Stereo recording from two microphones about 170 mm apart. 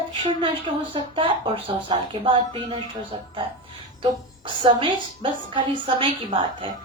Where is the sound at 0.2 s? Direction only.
30° right (ahead or behind).